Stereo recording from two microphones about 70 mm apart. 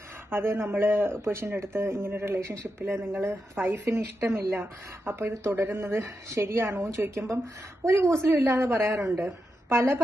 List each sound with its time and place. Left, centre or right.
0.3 s speech: right